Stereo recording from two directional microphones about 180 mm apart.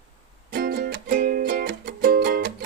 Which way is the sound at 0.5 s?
55° right (ahead or behind).